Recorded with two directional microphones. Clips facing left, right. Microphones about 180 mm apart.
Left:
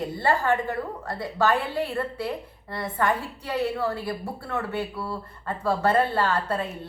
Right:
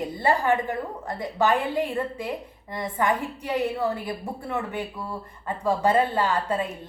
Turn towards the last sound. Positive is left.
turn(degrees=-10)  # may be behind; listen again after turning